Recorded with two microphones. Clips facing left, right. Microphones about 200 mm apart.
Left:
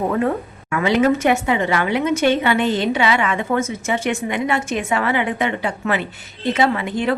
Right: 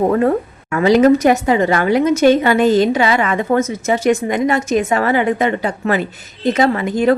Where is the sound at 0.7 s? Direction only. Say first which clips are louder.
Right 6 dB; 40° right (ahead or behind).